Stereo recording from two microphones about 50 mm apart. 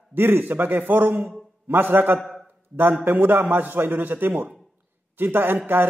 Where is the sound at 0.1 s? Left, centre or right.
Right.